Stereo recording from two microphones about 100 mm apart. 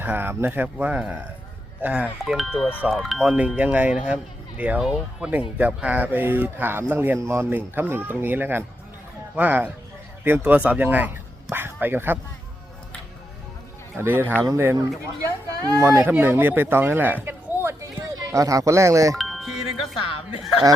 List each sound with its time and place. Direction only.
0.0 s speech: 20° right (ahead or behind)
2.3 s speech: centre (ahead or behind)
4.8 s speech: 5° right (ahead or behind)
5.3 s speech: 15° right (ahead or behind)
13.9 s speech: 25° right (ahead or behind)
15.7 s speech: 35° right (ahead or behind)
16.0 s speech: 20° right (ahead or behind)
17.2 s a sound: 25° right (ahead or behind)
19.1 s music: centre (ahead or behind)